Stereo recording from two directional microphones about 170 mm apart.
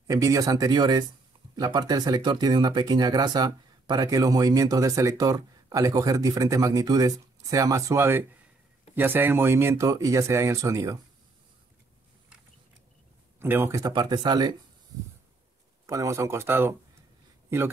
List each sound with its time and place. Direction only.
0.0 s speech: 20° right (ahead or behind)
13.4 s speech: 15° right (ahead or behind)
15.9 s speech: 20° right (ahead or behind)